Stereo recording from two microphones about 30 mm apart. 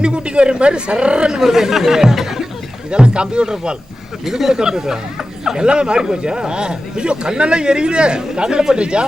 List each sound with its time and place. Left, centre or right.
0.0 s a man's voice: right
1.3 s speech: centre
2.9 s a man's voice: right
4.3 s a man's voice: centre; by 9.0 s right